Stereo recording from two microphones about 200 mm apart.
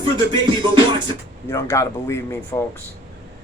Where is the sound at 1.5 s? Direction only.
15° left (ahead or behind).